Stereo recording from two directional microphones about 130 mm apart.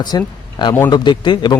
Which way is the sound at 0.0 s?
30° left (ahead or behind).